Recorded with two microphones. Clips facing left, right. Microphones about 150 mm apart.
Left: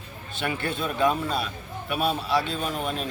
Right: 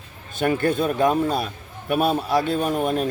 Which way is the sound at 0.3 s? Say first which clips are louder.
Right 9 dB; 45° right (ahead or behind).